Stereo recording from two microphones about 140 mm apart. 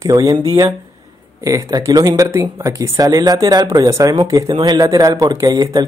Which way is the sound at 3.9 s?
20° right (ahead or behind).